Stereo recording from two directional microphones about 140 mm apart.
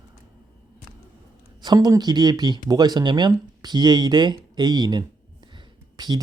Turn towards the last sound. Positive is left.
turn(degrees=-30)  # may be behind; listen again after turning